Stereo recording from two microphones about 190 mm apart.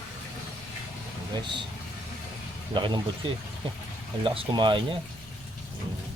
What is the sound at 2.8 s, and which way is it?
Speech, 25° right (ahead or behind).